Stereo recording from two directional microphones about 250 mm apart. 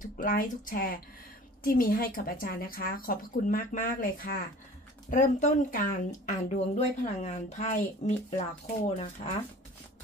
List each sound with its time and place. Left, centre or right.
0.2 s speech: left